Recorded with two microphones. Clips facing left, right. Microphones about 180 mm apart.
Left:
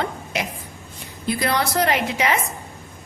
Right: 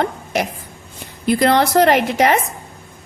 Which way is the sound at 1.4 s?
55° right (ahead or behind).